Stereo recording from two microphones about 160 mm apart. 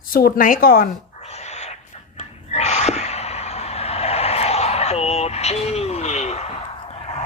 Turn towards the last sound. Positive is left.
turn(degrees=40)  # may be behind; listen again after turning